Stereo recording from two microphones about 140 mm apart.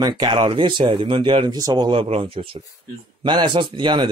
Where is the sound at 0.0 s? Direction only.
35° right (ahead or behind).